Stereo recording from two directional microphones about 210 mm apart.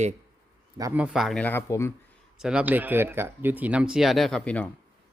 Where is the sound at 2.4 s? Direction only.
5° right (ahead or behind).